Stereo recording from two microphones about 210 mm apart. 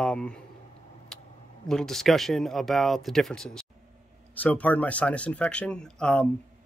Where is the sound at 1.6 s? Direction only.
Centre (ahead or behind).